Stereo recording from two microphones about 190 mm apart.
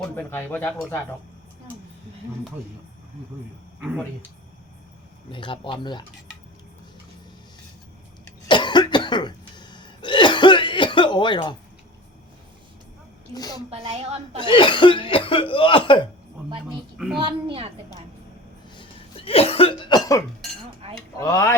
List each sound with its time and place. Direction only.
0.0 s speech: 10° left (ahead or behind)
5.3 s speech: 25° left (ahead or behind)
8.4 s cough: 25° left (ahead or behind)
13.3 s speech: 20° left (ahead or behind)
13.7 s a woman's voice: 30° right (ahead or behind)
14.4 s speech: 25° left (ahead or behind)
17.2 s a woman's voice: 30° right (ahead or behind)
18.8 s cough: 30° left (ahead or behind)
20.8 s dishes: 30° right (ahead or behind)
21.2 s speech: 15° left (ahead or behind)